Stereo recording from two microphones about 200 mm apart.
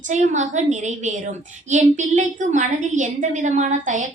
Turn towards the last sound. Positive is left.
turn(degrees=-35)  # may be behind; listen again after turning